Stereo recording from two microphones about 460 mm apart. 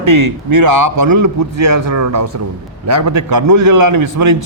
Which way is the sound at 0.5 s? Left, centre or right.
Right.